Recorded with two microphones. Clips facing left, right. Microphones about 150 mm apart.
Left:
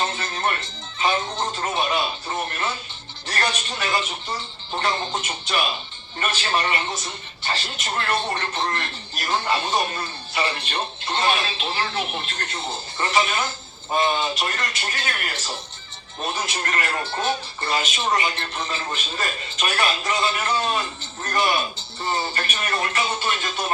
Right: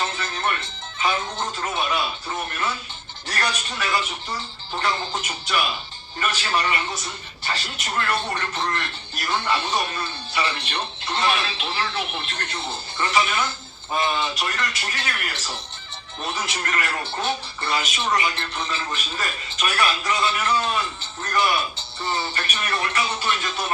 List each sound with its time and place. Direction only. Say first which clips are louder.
0.0 s music: left 1 dB; 30° left (ahead or behind)
1.0 s speech: left 2 dB; 25° left (ahead or behind)